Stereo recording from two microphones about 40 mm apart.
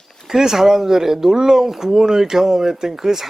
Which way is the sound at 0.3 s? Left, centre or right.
Centre.